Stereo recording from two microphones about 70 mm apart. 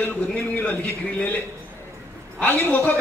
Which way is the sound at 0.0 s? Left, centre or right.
Left.